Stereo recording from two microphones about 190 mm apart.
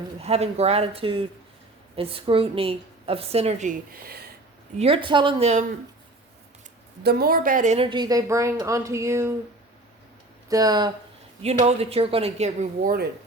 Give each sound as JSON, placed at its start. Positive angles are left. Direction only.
{"t": 0.2, "sound": "a woman's voice", "side_deg": -35}
{"t": 4.8, "sound": "speech", "side_deg": -30}
{"t": 7.0, "sound": "a woman's voice", "side_deg": -55}
{"t": 7.9, "sound": "a woman's voice", "side_deg": -20}
{"t": 10.5, "sound": "speech", "side_deg": -20}
{"t": 11.4, "sound": "a woman's voice", "side_deg": -35}